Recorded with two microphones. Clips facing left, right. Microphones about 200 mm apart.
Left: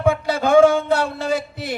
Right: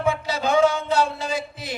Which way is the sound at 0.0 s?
50° left (ahead or behind).